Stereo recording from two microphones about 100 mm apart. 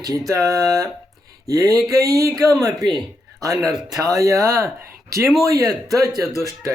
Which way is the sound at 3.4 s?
35° right (ahead or behind).